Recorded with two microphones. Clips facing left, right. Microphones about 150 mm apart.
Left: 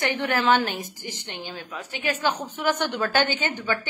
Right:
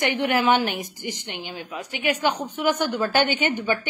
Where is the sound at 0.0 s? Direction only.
15° right (ahead or behind).